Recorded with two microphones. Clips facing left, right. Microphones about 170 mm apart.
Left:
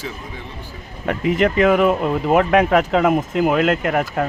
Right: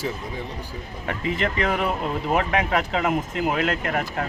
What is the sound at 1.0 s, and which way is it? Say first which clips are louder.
Speech: left 8 dB; 50° left (ahead or behind).